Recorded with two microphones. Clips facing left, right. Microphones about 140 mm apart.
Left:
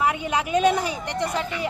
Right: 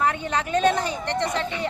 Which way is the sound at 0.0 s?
10° left (ahead or behind).